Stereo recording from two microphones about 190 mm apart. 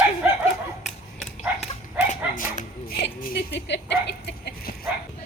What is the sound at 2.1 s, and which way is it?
Speech, 40° left (ahead or behind).